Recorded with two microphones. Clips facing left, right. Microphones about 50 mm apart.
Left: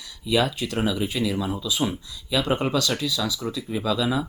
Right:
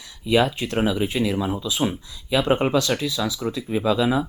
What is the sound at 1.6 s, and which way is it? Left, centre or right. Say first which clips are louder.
Speech: right 2 dB; right.